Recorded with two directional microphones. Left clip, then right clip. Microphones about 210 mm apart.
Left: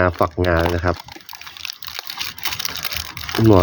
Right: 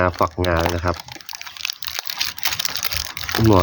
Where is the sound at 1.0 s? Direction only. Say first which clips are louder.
Right 2 dB; 25° right (ahead or behind).